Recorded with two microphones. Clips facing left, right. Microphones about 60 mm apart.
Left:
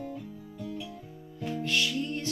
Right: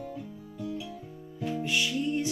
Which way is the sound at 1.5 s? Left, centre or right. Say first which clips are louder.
Even; centre.